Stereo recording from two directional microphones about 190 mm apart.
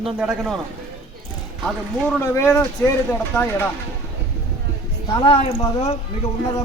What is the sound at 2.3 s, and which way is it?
A man's voice, 10° left (ahead or behind).